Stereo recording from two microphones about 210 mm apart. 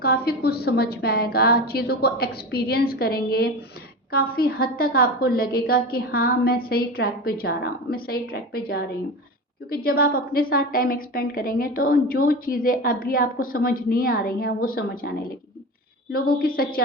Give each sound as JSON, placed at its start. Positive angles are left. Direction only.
{"t": 0.0, "sound": "a woman's voice", "side_deg": 45}